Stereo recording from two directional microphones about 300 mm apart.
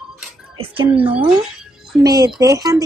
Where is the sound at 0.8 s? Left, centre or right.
Centre.